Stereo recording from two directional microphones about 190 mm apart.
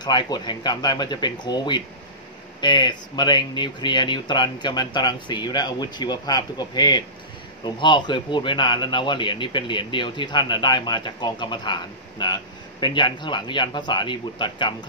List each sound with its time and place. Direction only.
0.0 s speech: 20° left (ahead or behind)